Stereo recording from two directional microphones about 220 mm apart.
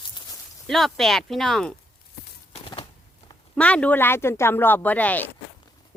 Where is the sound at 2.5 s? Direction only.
25° left (ahead or behind).